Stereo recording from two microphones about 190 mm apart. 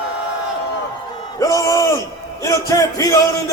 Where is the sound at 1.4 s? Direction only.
15° left (ahead or behind).